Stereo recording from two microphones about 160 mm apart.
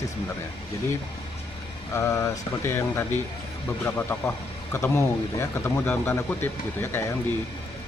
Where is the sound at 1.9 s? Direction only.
20° left (ahead or behind).